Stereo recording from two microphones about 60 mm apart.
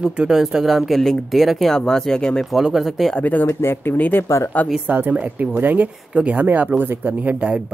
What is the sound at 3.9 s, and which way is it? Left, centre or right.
Speech, left.